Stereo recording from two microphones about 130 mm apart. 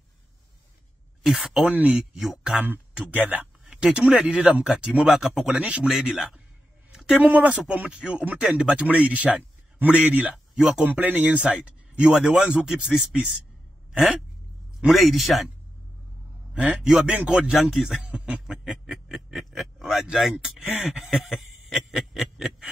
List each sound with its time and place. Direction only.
1.2 s speech: centre (ahead or behind)
14.8 s speech: centre (ahead or behind)
16.5 s a man's voice: 5° right (ahead or behind)